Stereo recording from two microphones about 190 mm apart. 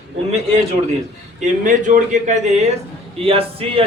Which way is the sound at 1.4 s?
40° right (ahead or behind).